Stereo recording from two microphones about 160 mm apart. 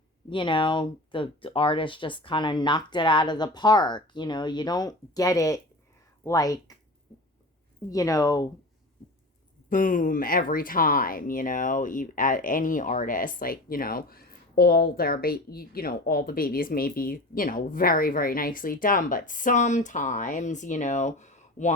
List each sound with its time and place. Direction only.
0.3 s speech: 30° left (ahead or behind)
7.9 s speech: 20° left (ahead or behind)
9.6 s speech: 55° left (ahead or behind)